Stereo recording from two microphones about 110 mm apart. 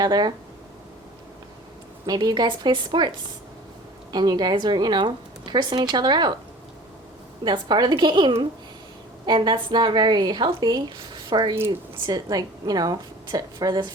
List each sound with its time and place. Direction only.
0.0 s a woman's voice: 35° right (ahead or behind)
2.0 s a woman's voice: 35° right (ahead or behind)
4.1 s a woman's voice: 40° right (ahead or behind)
7.4 s a woman's voice: 40° right (ahead or behind)